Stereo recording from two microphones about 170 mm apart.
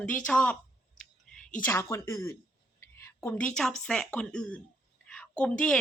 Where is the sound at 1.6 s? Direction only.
15° left (ahead or behind).